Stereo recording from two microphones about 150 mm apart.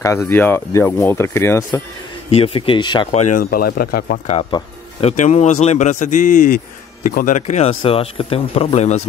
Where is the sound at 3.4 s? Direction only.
85° left.